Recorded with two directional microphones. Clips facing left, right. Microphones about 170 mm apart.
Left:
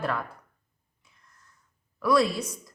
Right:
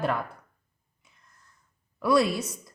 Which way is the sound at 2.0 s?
25° right (ahead or behind).